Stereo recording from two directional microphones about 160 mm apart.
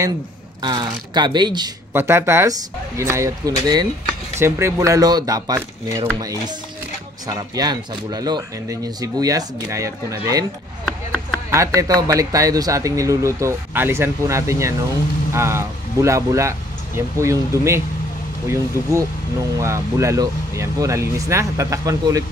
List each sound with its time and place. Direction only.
0.6 s a man's voice: 30° right (ahead or behind)
2.0 s a man's voice: 15° right (ahead or behind)
7.2 s a man's voice: 25° right (ahead or behind)
11.5 s a man's voice: 20° right (ahead or behind)